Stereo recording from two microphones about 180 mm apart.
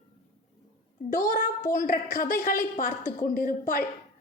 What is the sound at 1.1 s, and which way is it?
A woman's voice, 45° left (ahead or behind).